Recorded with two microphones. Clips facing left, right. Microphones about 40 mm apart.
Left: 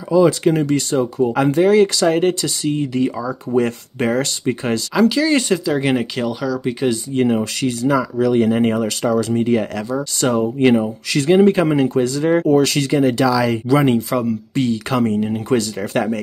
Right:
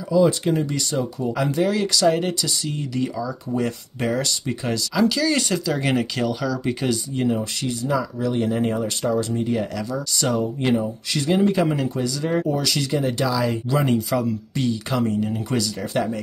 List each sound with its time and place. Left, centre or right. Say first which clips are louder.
0.1 s speech: left 4 dB; left
0.7 s speech: left 8 dB; left
5.0 s speech: left 5 dB; left
5.7 s speech: left 4 dB; centre
7.2 s speech: left 7 dB; left
7.6 s speech: left 7 dB; left
10.1 s speech: left 5 dB; left
11.2 s speech: left 6 dB; left
12.9 s speech: left 8 dB; left
14.1 s speech: left 3 dB; left
14.5 s speech: left 7 dB; left
14.9 s speech: left 5 dB; left
15.2 s speech: left 6 dB; left
15.8 s speech: left 4 dB; left